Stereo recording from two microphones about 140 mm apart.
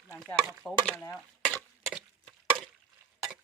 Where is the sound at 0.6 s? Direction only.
15° left (ahead or behind).